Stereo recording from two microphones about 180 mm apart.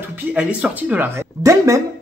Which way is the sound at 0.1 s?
5° right (ahead or behind).